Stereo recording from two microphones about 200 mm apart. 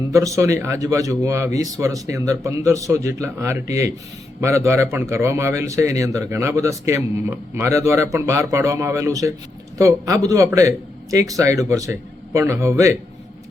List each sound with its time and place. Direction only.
0.1 s a man's voice: 15° right (ahead or behind)